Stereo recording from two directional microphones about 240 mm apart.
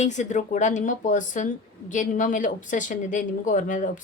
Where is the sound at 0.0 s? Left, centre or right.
Left.